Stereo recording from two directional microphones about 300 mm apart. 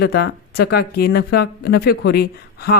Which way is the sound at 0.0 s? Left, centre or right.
Left.